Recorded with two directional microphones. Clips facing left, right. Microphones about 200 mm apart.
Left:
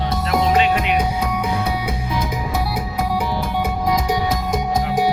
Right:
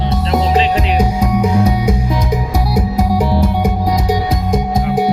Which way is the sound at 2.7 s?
40° right (ahead or behind).